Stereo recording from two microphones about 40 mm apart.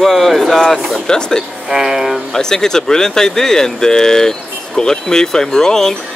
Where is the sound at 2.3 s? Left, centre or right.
Centre.